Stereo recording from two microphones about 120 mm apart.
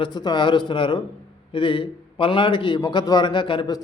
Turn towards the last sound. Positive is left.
turn(degrees=45)  # may be behind; listen again after turning